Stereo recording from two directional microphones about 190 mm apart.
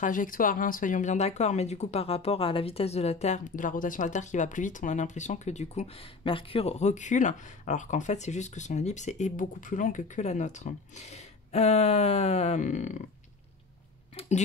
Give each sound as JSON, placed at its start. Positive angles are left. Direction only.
{"t": 0.0, "sound": "speech", "side_deg": 45}